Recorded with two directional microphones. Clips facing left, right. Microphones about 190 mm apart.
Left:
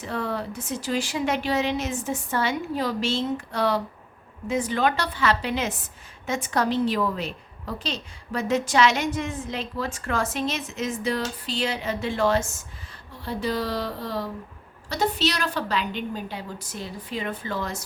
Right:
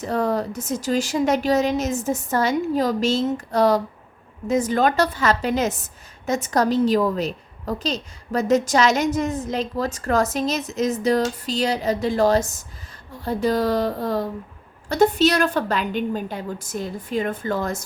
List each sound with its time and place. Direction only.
0.0 s a woman's voice: 40° right (ahead or behind)